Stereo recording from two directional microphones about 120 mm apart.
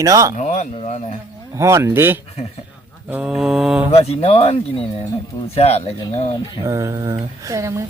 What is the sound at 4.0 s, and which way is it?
Speech, 60° left (ahead or behind).